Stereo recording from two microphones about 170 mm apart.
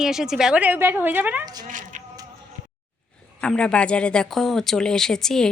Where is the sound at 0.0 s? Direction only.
5° right (ahead or behind).